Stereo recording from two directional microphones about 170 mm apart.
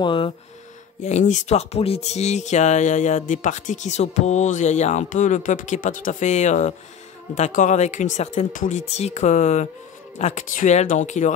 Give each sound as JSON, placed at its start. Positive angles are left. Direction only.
{"t": 0.0, "sound": "speech", "side_deg": 30}
{"t": 1.0, "sound": "speech", "side_deg": 45}